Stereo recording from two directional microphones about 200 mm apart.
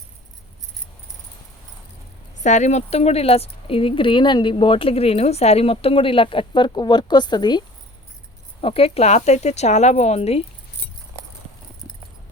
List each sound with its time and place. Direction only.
2.4 s speech: 35° left (ahead or behind)
8.6 s speech: 30° left (ahead or behind)